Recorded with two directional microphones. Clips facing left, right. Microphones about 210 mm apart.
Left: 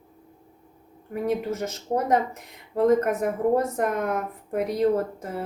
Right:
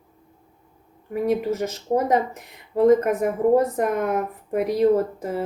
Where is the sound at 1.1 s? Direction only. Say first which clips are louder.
Right 4 dB; centre (ahead or behind).